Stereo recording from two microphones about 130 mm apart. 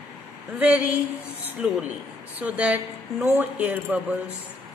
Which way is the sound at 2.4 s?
10° right (ahead or behind).